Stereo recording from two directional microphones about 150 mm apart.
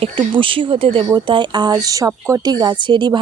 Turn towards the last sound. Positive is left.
turn(degrees=-30)  # may be behind; listen again after turning